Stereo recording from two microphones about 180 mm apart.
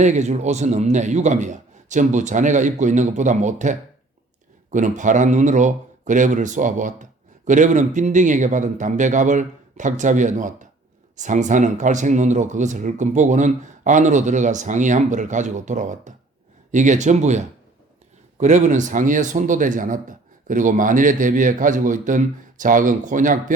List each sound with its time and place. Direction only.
0.0 s a man's voice: 40° right (ahead or behind)